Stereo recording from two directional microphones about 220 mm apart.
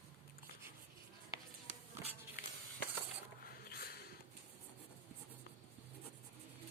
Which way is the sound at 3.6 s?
45° left (ahead or behind).